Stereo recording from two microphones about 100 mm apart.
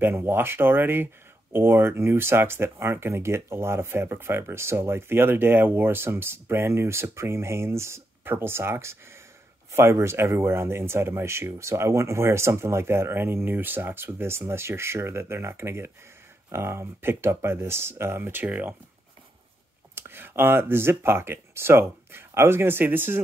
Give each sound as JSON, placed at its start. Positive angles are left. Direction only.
{"t": 0.0, "sound": "speech", "side_deg": -25}
{"t": 20.0, "sound": "speech", "side_deg": -20}